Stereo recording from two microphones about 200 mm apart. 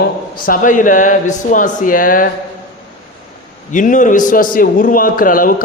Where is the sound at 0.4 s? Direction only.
45° left (ahead or behind).